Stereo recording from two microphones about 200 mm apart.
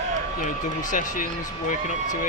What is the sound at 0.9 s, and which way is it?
Speech, 40° left (ahead or behind).